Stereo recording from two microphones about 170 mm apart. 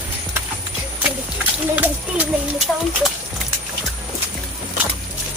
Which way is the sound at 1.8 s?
10° right (ahead or behind).